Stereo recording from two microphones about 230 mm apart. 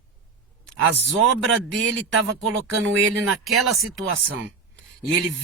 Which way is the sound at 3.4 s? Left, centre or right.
Centre.